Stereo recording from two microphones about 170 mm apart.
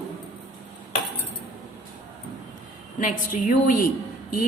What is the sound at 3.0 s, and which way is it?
Speech, 50° left (ahead or behind).